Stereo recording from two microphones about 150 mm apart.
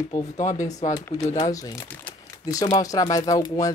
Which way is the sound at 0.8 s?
20° left (ahead or behind).